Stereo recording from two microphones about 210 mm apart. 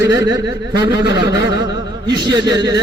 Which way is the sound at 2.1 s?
20° right (ahead or behind).